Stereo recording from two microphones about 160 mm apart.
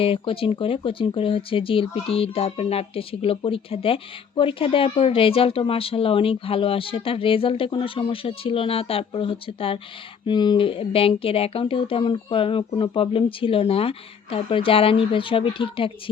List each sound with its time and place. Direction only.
0.0 s speech: 35° left (ahead or behind)